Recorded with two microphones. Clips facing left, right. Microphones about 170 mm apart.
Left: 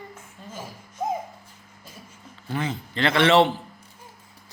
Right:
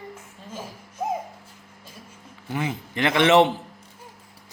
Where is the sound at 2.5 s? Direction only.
15° right (ahead or behind).